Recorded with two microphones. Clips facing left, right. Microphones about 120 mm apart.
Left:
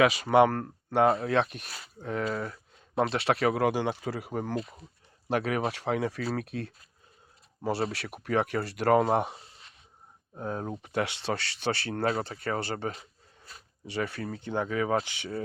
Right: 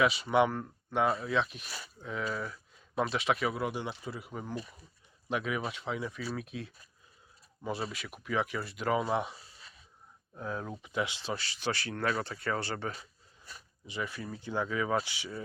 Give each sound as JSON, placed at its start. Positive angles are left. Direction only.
{"t": 0.0, "sound": "speech", "side_deg": 80}
{"t": 1.0, "sound": "speech", "side_deg": 50}
{"t": 3.2, "sound": "speech", "side_deg": 70}
{"t": 5.4, "sound": "speech", "side_deg": 60}
{"t": 7.6, "sound": "speech", "side_deg": 75}
{"t": 9.0, "sound": "speech", "side_deg": 45}
{"t": 10.8, "sound": "speech", "side_deg": 65}
{"t": 11.7, "sound": "speech", "side_deg": 30}
{"t": 13.8, "sound": "speech", "side_deg": 65}